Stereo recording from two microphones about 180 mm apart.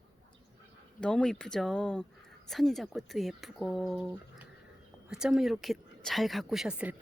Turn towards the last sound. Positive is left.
turn(degrees=-5)  # may be behind; listen again after turning